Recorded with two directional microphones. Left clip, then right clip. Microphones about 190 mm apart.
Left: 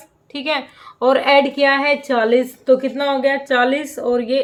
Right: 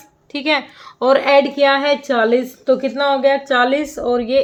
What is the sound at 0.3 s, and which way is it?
A woman's voice, 30° right (ahead or behind).